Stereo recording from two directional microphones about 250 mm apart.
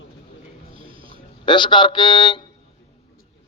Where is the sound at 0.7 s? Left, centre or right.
Right.